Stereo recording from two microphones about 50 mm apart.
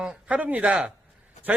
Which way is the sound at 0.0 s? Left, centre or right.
Right.